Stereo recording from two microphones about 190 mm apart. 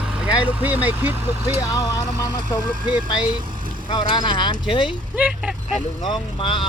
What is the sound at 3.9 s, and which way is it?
Speech, 25° left (ahead or behind).